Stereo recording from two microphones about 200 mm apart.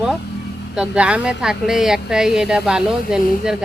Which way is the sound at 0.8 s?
5° right (ahead or behind).